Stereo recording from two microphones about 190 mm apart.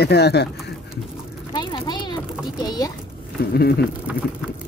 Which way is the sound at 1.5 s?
25° left (ahead or behind).